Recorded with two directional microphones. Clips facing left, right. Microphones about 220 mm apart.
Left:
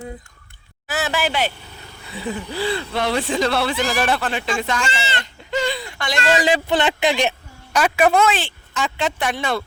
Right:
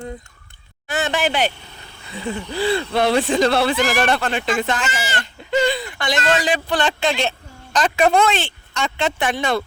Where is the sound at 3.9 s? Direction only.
Centre (ahead or behind).